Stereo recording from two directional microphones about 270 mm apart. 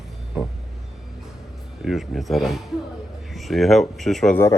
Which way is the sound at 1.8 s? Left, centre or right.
Centre.